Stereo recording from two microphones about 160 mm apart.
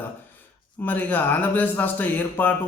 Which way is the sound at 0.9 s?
10° left (ahead or behind).